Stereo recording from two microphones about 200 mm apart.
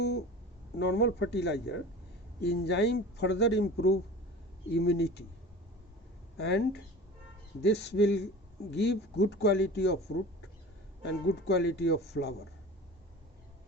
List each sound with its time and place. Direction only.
0.8 s speech: 55° left (ahead or behind)
6.3 s speech: 55° left (ahead or behind)
11.0 s speech: 55° left (ahead or behind)